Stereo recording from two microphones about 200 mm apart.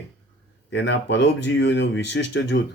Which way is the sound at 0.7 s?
60° left (ahead or behind).